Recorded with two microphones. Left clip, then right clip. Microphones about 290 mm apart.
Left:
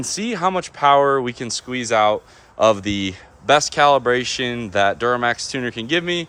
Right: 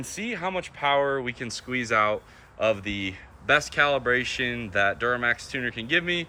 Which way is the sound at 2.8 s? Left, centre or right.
Left.